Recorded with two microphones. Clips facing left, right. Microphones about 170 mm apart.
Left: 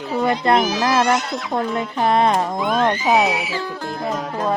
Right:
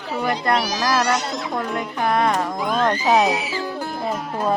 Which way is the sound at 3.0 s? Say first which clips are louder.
Right 2 dB; 10° left (ahead or behind).